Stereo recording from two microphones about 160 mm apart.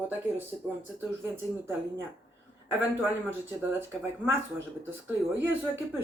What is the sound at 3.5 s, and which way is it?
Speech, 15° right (ahead or behind).